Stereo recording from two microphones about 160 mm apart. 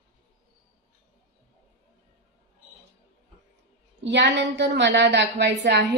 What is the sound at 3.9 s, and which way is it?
A woman's voice, 90° right.